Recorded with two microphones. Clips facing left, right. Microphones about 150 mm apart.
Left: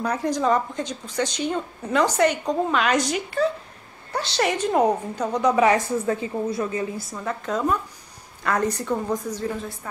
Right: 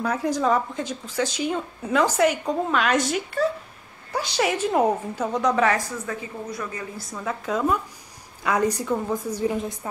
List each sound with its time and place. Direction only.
0.0 s speech: 5° right (ahead or behind)
5.6 s a woman's voice: 20° left (ahead or behind)
7.1 s a woman's voice: 5° right (ahead or behind)
9.4 s a woman's voice: 15° right (ahead or behind)